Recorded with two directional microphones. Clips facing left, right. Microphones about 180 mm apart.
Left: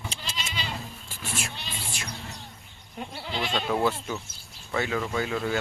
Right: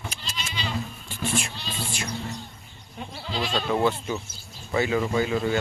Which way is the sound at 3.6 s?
Centre (ahead or behind).